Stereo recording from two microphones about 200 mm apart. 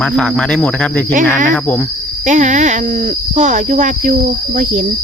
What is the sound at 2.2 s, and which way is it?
Speech, 35° right (ahead or behind).